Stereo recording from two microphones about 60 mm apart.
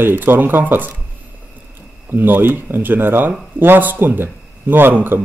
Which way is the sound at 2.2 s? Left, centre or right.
Right.